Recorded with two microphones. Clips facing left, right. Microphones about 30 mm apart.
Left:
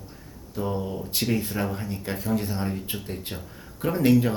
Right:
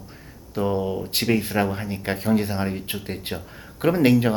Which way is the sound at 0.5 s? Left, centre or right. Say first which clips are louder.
Right 5 dB; right.